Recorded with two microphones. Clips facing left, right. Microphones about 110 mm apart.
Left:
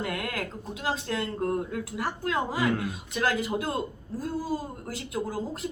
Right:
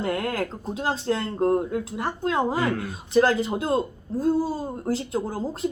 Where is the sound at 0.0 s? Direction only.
30° right (ahead or behind).